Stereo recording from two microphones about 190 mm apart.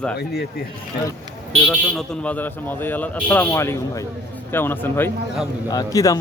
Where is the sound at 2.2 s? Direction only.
10° left (ahead or behind).